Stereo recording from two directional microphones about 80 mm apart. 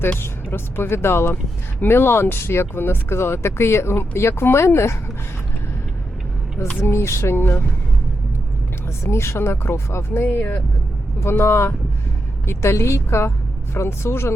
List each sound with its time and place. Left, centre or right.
0.2 s speech: left
6.7 s speech: left
9.0 s speech: left
11.2 s speech: left